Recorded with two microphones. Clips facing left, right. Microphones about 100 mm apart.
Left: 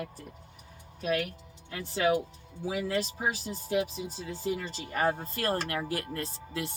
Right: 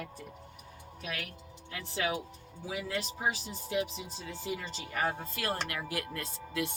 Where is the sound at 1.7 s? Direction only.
35° left (ahead or behind).